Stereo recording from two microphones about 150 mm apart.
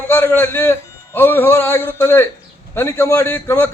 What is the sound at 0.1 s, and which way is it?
A man's voice, 15° left (ahead or behind).